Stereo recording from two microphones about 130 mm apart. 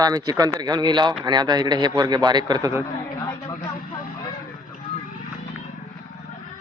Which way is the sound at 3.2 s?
30° left (ahead or behind).